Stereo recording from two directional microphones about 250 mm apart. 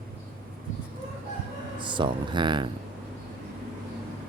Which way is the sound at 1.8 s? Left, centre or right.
Centre.